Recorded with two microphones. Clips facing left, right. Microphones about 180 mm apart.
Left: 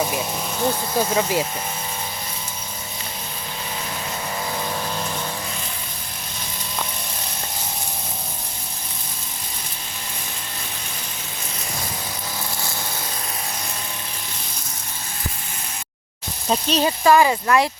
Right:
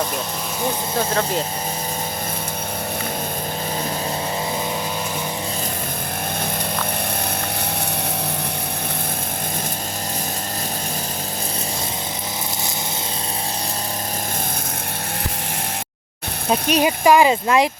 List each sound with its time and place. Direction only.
1.1 s speech: 10° left (ahead or behind)
16.5 s speech: 10° right (ahead or behind)